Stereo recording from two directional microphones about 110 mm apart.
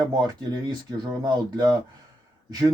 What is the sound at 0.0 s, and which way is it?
Speech, 35° right (ahead or behind).